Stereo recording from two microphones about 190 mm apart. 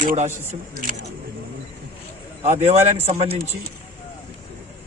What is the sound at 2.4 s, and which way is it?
Speech, 35° right (ahead or behind).